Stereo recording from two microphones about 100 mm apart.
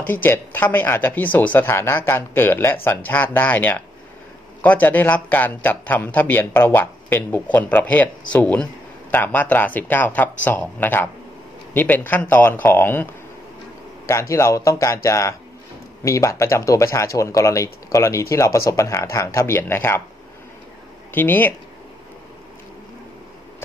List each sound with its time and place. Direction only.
0.0 s a man's voice: 20° left (ahead or behind)
21.1 s speech: 20° left (ahead or behind)